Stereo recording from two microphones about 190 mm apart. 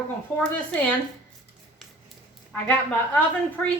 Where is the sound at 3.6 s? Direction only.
5° left (ahead or behind).